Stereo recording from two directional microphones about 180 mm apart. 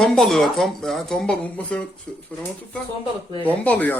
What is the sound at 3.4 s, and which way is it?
Speech, 10° left (ahead or behind).